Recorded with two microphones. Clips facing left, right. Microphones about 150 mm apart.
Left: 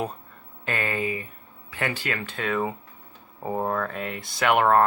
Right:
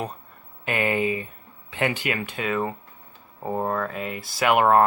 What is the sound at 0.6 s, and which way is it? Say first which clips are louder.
Speech: right 4 dB; 15° right (ahead or behind).